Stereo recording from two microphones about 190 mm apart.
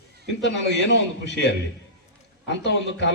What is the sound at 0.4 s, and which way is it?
A man's voice, 65° left (ahead or behind).